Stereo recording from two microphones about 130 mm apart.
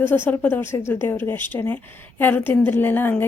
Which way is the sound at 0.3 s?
15° left (ahead or behind).